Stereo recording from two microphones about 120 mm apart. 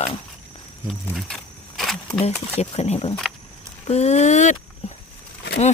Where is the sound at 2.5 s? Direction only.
60° left (ahead or behind).